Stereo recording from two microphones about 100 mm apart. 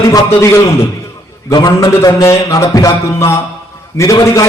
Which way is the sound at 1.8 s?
30° left (ahead or behind).